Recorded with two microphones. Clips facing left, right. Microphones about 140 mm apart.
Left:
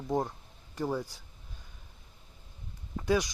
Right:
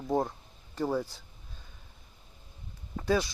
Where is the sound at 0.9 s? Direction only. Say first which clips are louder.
Right 4 dB; 10° left (ahead or behind).